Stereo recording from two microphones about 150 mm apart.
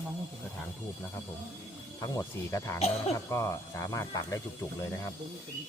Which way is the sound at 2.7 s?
45° left (ahead or behind).